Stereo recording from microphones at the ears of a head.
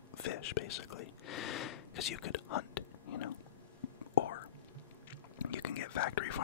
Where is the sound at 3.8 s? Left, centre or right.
Left.